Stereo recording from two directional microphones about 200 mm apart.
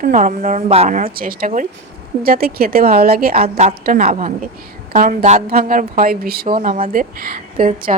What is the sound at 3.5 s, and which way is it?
Speech, 30° right (ahead or behind).